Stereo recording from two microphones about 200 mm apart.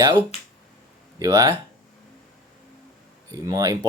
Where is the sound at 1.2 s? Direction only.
15° right (ahead or behind).